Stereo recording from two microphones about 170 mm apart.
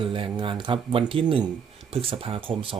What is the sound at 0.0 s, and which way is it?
Speech, 30° right (ahead or behind).